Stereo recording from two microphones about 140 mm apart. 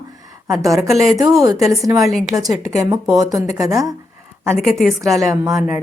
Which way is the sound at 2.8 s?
20° right (ahead or behind).